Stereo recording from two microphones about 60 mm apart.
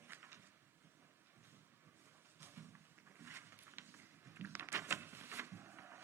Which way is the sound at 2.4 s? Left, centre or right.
Right.